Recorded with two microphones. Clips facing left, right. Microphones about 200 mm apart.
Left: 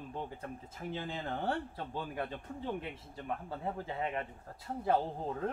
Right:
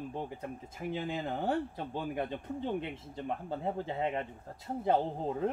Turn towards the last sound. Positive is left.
turn(degrees=-20)  # may be behind; listen again after turning